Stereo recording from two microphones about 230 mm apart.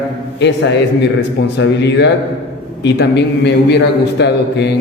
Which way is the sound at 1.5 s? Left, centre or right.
Left.